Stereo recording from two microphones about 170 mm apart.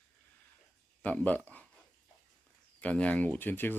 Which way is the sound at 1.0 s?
10° left (ahead or behind).